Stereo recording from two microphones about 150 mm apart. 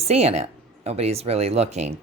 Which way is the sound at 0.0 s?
45° right (ahead or behind).